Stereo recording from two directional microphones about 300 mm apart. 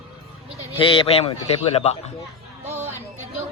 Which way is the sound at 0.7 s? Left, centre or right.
Centre.